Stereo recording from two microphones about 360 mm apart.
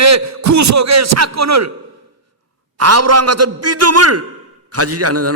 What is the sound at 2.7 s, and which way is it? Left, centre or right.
A man's voice, right.